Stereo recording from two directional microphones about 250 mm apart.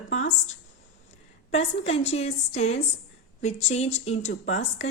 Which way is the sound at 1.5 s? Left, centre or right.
Left.